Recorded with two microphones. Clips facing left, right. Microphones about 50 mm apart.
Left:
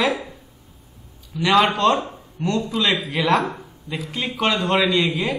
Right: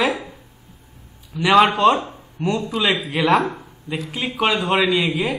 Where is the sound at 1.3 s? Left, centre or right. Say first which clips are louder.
Right 3 dB; centre.